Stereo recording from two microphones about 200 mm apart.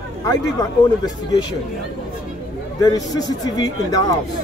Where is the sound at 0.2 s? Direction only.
20° left (ahead or behind).